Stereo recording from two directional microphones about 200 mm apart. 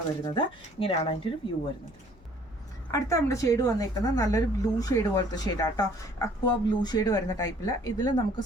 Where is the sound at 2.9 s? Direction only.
15° left (ahead or behind).